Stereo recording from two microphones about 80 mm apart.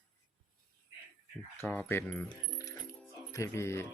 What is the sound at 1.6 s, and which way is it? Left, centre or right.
Keys jangling, left.